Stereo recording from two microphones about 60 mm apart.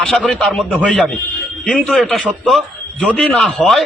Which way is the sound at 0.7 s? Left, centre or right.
Left.